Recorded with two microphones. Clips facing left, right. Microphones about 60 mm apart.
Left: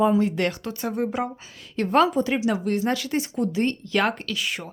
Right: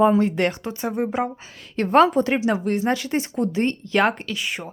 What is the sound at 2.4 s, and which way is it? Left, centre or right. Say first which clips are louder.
Speech: right 2 dB; right.